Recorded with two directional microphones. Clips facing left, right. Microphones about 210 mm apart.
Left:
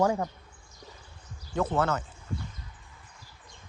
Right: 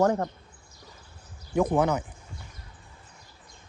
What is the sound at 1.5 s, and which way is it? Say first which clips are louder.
Speech: right 4 dB; 15° right (ahead or behind).